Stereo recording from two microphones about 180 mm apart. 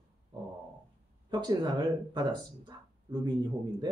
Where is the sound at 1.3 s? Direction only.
25° right (ahead or behind).